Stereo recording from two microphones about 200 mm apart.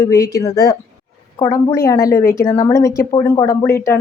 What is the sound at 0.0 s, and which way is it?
A woman's voice, 15° left (ahead or behind).